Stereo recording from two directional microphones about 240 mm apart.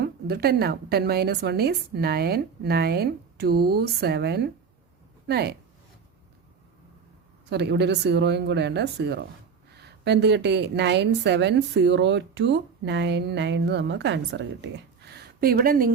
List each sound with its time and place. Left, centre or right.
0.0 s a woman's voice: right
7.5 s a woman's voice: right
15.1 s a sound: right